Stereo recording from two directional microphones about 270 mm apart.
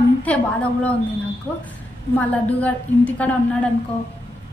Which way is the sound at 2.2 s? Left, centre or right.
Centre.